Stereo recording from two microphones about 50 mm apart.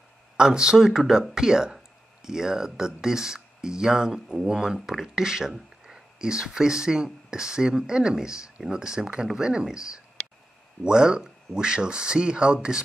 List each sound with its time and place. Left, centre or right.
0.4 s speech: centre